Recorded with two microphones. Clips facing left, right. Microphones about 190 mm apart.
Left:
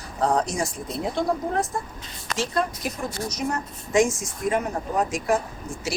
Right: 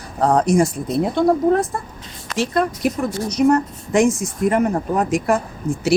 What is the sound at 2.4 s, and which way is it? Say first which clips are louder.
Speech: right 7 dB; 60° right (ahead or behind).